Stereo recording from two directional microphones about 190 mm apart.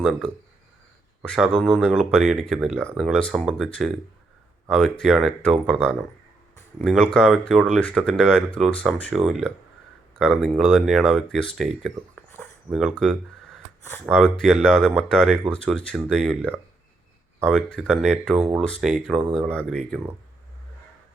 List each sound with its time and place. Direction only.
0.0 s speech: centre (ahead or behind)
1.6 s speech: centre (ahead or behind)
7.1 s speech: 5° left (ahead or behind)
11.8 s a sound: 10° left (ahead or behind)
12.6 s speech: 5° right (ahead or behind)
17.4 s speech: 5° left (ahead or behind)